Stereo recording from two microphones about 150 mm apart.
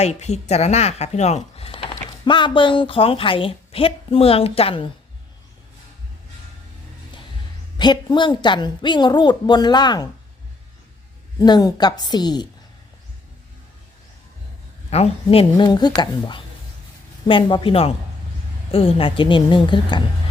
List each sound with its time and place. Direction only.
0.0 s a woman's voice: 50° left (ahead or behind)
7.8 s a woman's voice: 30° left (ahead or behind)
11.3 s a woman's voice: 25° left (ahead or behind)
14.8 s a woman's voice: 40° left (ahead or behind)